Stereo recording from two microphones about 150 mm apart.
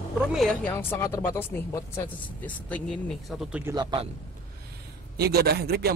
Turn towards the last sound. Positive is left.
turn(degrees=-90)